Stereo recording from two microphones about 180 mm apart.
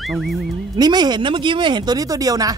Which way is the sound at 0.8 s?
25° right (ahead or behind).